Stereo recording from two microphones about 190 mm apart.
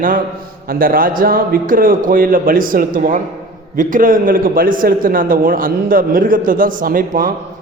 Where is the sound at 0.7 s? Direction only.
50° right (ahead or behind).